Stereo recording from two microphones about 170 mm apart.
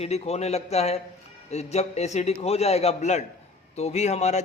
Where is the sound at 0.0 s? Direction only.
40° left (ahead or behind).